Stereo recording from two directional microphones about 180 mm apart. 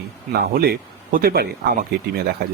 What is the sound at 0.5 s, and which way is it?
Speech, 55° right (ahead or behind).